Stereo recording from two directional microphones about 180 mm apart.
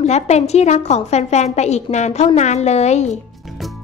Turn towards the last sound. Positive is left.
turn(degrees=40)  # may be behind; listen again after turning